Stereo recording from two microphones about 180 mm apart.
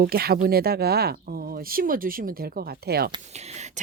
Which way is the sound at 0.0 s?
60° right (ahead or behind).